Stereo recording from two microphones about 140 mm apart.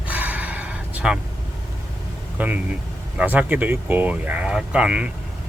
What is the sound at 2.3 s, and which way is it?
Speech, 10° right (ahead or behind).